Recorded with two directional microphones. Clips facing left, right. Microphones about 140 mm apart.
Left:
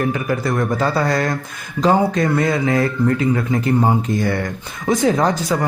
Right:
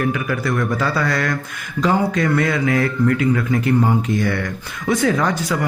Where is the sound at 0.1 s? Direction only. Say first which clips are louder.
Left 1 dB; 35° left (ahead or behind).